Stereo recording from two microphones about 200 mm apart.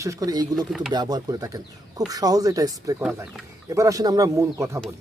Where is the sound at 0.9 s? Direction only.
20° right (ahead or behind).